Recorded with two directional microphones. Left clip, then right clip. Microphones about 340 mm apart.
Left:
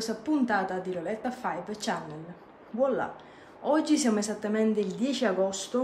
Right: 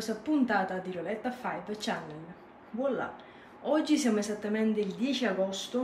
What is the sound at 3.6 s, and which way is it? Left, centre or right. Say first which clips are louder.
Speech: left 2 dB; centre.